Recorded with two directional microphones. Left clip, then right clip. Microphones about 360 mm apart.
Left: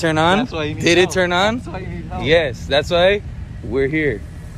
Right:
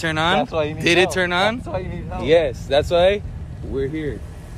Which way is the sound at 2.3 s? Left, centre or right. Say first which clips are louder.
Left 1 dB; left.